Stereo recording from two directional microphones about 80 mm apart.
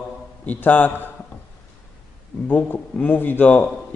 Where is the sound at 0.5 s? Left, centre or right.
Left.